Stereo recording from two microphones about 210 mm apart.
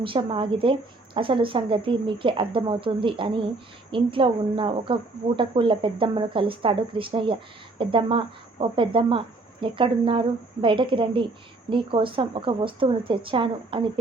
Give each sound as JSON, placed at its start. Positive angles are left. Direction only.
{"t": 0.0, "sound": "speech", "side_deg": -25}